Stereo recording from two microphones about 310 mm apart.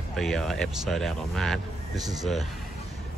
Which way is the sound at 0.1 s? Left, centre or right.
Centre.